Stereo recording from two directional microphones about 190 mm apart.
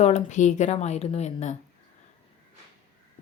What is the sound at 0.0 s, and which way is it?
A woman's voice, 35° left (ahead or behind).